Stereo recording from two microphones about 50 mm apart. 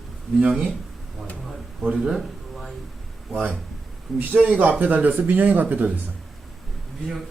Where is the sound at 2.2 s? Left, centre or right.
Centre.